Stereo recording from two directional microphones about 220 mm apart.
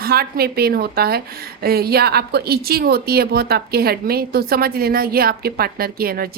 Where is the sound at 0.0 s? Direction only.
45° right (ahead or behind).